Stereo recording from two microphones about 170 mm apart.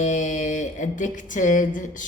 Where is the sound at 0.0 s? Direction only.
45° left (ahead or behind).